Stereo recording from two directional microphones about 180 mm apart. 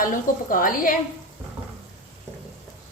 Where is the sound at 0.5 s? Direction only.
50° left (ahead or behind).